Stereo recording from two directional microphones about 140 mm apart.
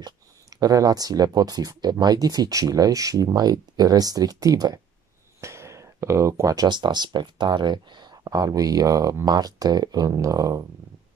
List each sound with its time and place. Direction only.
0.6 s speech: 25° right (ahead or behind)